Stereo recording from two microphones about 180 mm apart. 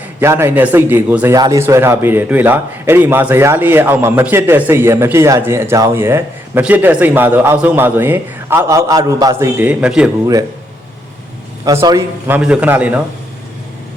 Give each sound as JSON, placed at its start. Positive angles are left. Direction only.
{"t": 0.2, "sound": "a man's voice", "side_deg": -15}
{"t": 11.6, "sound": "a man's voice", "side_deg": -20}